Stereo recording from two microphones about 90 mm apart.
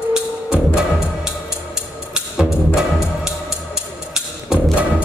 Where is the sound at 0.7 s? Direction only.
5° right (ahead or behind).